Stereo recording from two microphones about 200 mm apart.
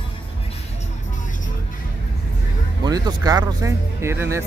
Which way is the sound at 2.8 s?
20° right (ahead or behind).